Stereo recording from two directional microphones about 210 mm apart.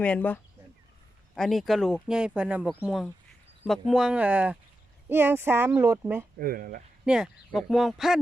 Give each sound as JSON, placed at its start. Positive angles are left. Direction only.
{"t": 0.0, "sound": "speech", "side_deg": 5}
{"t": 1.4, "sound": "speech", "side_deg": 0}
{"t": 6.4, "sound": "speech", "side_deg": -45}
{"t": 7.0, "sound": "speech", "side_deg": -5}